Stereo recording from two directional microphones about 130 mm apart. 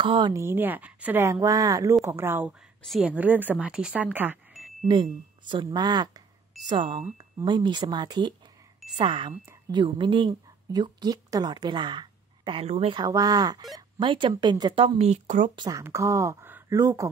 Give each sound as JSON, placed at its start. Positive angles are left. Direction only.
{"t": 0.0, "sound": "speech", "side_deg": -40}
{"t": 0.3, "sound": "a woman's voice", "side_deg": -20}
{"t": 2.8, "sound": "a woman's voice", "side_deg": 0}
{"t": 4.8, "sound": "a woman's voice", "side_deg": -35}
{"t": 12.6, "sound": "speech", "side_deg": -50}
{"t": 12.9, "sound": "speech", "side_deg": -30}
{"t": 15.0, "sound": "speech", "side_deg": -60}
{"t": 15.7, "sound": "speech", "side_deg": -25}